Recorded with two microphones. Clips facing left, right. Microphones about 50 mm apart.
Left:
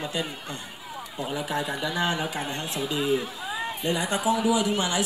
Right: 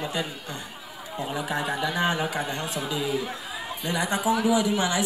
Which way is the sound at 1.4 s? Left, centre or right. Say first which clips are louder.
Right 2 dB; right.